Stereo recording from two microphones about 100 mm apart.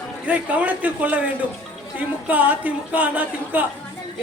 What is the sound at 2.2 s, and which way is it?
Speech, 15° right (ahead or behind).